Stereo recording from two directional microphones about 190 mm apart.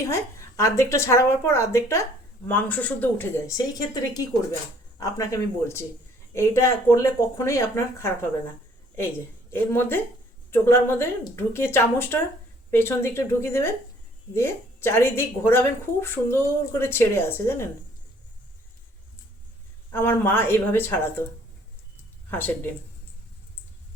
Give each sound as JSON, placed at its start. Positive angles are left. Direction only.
{"t": 0.0, "sound": "a woman's voice", "side_deg": 15}
{"t": 9.5, "sound": "a woman's voice", "side_deg": 10}
{"t": 19.9, "sound": "a woman's voice", "side_deg": 10}
{"t": 22.3, "sound": "speech", "side_deg": 10}